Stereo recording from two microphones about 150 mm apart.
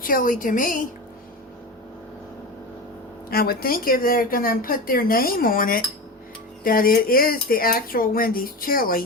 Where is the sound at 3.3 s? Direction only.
90° left; by 9.0 s 70° left (ahead or behind).